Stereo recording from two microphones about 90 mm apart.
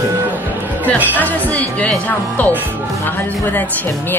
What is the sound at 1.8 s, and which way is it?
Speech, 15° left (ahead or behind).